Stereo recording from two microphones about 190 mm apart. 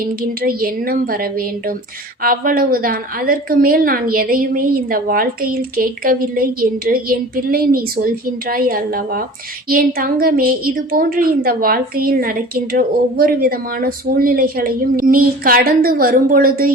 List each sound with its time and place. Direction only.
0.0 s a woman's voice: 50° right (ahead or behind)